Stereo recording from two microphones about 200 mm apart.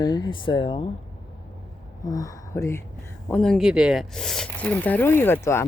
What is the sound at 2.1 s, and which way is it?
Speech, 15° left (ahead or behind).